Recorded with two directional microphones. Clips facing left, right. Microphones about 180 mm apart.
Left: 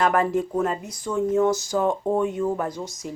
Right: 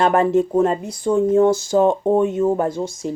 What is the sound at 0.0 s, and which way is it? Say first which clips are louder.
Speech: right 5 dB; 25° right (ahead or behind).